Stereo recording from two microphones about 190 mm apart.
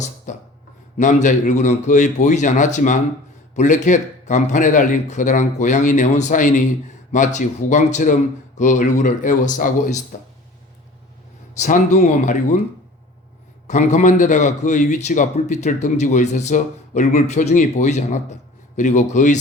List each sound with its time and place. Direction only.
0.3 s a sound: 40° left (ahead or behind)
0.9 s a man's voice: 40° left (ahead or behind)
11.5 s a man's voice: 40° left (ahead or behind)
13.7 s a man's voice: 40° left (ahead or behind)